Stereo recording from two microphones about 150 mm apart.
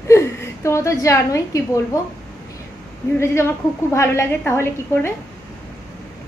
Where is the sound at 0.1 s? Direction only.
20° left (ahead or behind).